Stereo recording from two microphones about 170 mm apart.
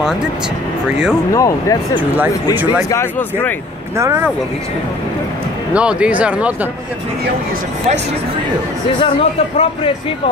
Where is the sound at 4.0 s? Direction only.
15° right (ahead or behind).